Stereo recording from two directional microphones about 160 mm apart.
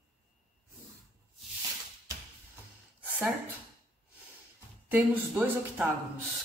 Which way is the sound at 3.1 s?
10° right (ahead or behind).